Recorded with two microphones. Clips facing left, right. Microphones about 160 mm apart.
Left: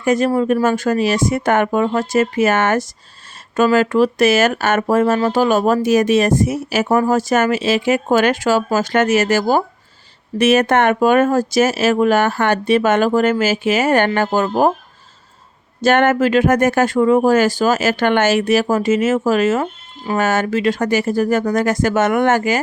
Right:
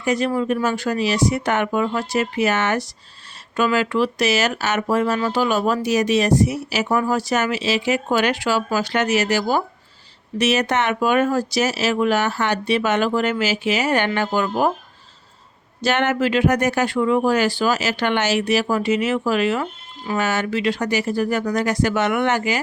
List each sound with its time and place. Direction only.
0.0 s speech: 50° left (ahead or behind)
15.8 s speech: 50° left (ahead or behind)